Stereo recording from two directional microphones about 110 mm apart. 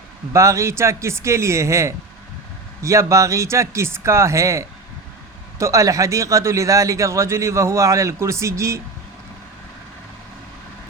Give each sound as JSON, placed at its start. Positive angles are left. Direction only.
{"t": 0.3, "sound": "a man's voice", "side_deg": -25}